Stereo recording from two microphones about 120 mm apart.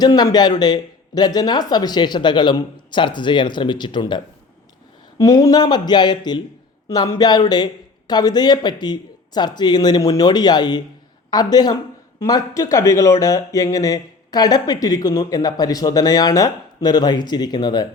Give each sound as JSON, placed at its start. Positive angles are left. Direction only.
{"t": 0.0, "sound": "speech", "side_deg": 35}
{"t": 5.1, "sound": "speech", "side_deg": 30}